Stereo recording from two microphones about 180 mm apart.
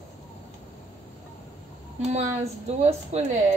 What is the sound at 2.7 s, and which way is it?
Speech, 35° right (ahead or behind).